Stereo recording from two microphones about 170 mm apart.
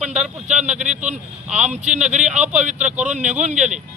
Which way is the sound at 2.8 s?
10° right (ahead or behind).